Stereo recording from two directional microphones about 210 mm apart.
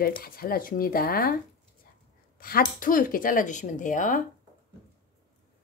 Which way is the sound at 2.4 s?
45° left (ahead or behind).